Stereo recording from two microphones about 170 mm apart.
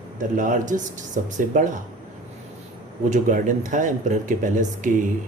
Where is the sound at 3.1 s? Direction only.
50° right (ahead or behind).